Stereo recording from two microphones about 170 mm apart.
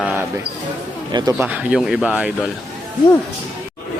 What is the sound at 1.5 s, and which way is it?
Speech, 5° right (ahead or behind).